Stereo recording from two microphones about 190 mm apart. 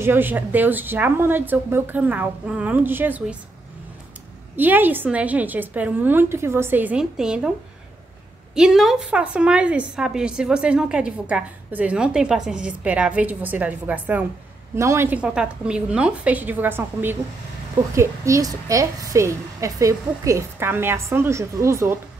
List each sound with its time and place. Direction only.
0.0 s a woman's voice: 10° right (ahead or behind)
4.6 s a woman's voice: 10° right (ahead or behind)
8.5 s a woman's voice: centre (ahead or behind)